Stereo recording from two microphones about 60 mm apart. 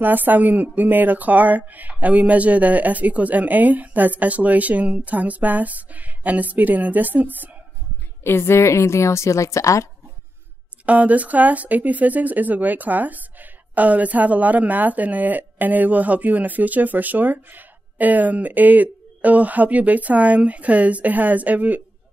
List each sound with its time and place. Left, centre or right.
0.0 s speech: right
8.2 s a woman's voice: left
10.9 s speech: right